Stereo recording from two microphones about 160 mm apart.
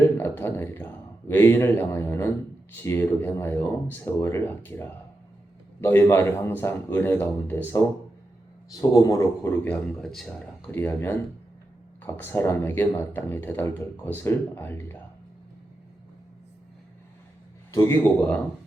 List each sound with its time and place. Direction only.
0.2 s speech: 15° left (ahead or behind)
9.6 s speech: 5° left (ahead or behind)
17.7 s speech: 15° left (ahead or behind)